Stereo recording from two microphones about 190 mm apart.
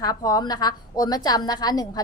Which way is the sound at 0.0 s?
20° left (ahead or behind).